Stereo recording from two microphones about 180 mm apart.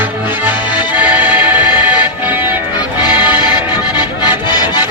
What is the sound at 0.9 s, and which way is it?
Music, 10° right (ahead or behind).